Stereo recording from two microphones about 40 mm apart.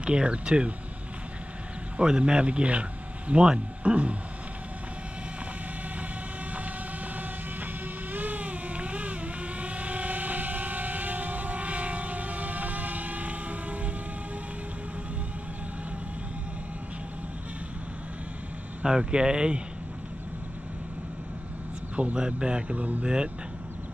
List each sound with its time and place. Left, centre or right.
0.0 s speech: right
2.0 s speech: right
7.2 s vehicle: right
18.9 s speech: right
22.1 s speech: right
22.8 s speech: right
23.0 s speech: right